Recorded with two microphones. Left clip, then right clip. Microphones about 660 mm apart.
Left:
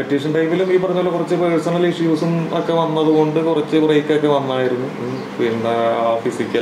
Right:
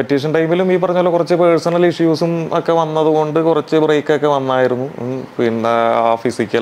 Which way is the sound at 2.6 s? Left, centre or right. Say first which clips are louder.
Right 2 dB; right.